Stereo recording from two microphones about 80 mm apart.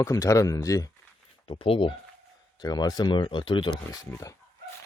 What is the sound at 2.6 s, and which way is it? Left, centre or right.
Speech, left.